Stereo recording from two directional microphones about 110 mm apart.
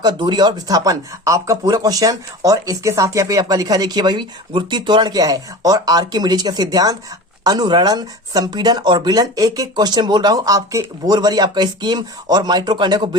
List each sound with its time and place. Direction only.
0.0 s speech: 45° right (ahead or behind)